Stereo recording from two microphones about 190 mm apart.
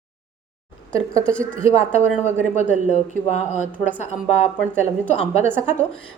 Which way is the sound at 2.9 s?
40° left (ahead or behind).